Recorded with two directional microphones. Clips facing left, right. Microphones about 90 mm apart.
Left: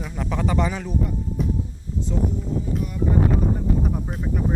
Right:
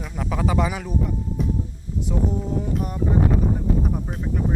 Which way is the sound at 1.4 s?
Centre (ahead or behind).